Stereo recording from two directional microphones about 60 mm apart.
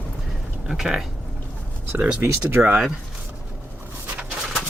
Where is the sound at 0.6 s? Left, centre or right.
Centre.